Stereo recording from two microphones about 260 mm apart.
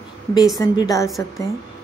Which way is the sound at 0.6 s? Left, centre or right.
Centre.